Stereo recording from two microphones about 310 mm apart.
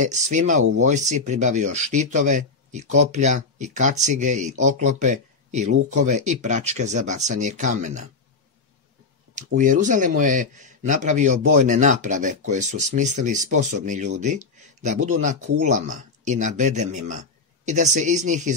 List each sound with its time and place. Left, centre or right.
0.0 s speech: right
9.6 s speech: right